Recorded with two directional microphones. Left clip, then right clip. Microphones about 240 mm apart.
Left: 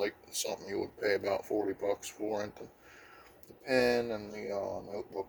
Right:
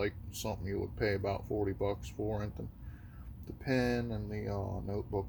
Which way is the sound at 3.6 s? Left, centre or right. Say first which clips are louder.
Left 5 dB; left.